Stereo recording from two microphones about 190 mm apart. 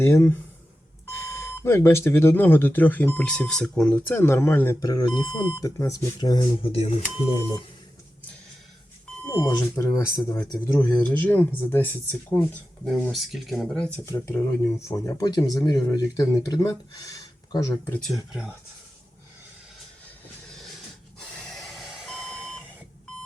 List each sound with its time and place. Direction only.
0.0 s speech: 15° left (ahead or behind); by 7.3 s 30° left (ahead or behind)
9.2 s speech: 15° left (ahead or behind)
13.1 s speech: centre (ahead or behind); by 17.7 s 20° left (ahead or behind)
17.9 s speech: centre (ahead or behind)
21.3 s beep: centre (ahead or behind)